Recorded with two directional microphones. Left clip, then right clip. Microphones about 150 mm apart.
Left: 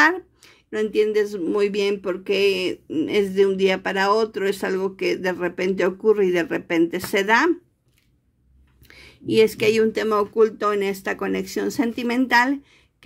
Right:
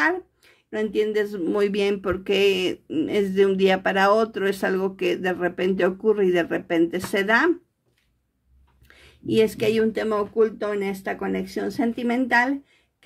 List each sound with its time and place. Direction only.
0.0 s speech: 20° left (ahead or behind)
8.8 s speech: 15° left (ahead or behind)